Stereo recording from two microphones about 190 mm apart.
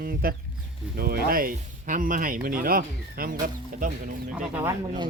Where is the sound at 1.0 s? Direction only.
55° right (ahead or behind).